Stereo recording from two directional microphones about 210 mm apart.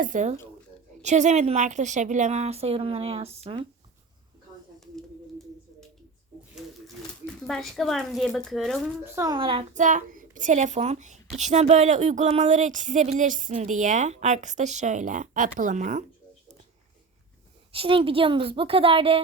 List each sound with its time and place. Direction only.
0.0 s a woman's voice: 35° right (ahead or behind)
7.4 s speech: centre (ahead or behind)
9.1 s a woman's voice: 20° right (ahead or behind); by 16.0 s 35° right (ahead or behind)
17.7 s a woman's voice: 25° right (ahead or behind)